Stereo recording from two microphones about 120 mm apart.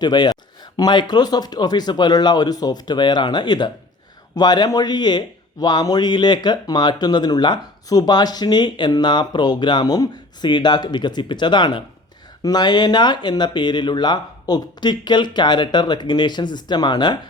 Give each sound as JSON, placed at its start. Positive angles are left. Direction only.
{"t": 0.0, "sound": "a man's voice", "side_deg": 35}